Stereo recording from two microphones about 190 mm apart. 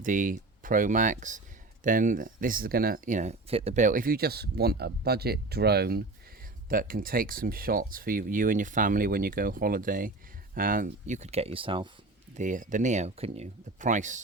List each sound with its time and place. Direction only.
0.0 s speech: 45° right (ahead or behind); by 11.9 s 25° right (ahead or behind)
12.4 s speech: 40° right (ahead or behind)